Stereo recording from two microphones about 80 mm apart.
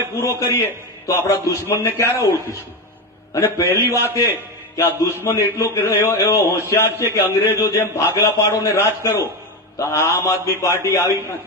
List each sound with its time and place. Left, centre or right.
0.2 s a man's voice: left
3.3 s a man's voice: left